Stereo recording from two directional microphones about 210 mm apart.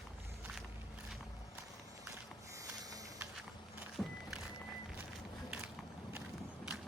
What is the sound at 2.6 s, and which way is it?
Sniff, 15° right (ahead or behind).